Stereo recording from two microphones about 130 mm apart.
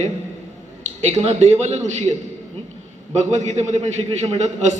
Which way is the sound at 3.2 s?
65° right (ahead or behind).